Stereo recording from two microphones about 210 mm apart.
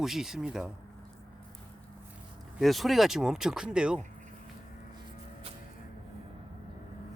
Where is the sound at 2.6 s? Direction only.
Centre (ahead or behind).